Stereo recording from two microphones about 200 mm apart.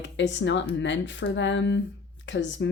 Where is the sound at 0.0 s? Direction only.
65° left (ahead or behind).